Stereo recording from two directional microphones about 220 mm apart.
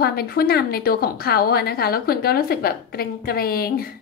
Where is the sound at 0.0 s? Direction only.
45° left (ahead or behind).